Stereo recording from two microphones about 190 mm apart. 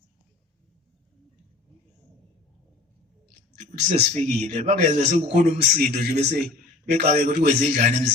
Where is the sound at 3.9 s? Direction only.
40° right (ahead or behind).